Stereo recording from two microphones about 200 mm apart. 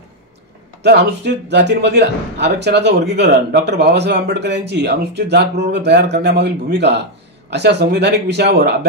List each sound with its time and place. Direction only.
0.8 s a man's voice: 55° right (ahead or behind)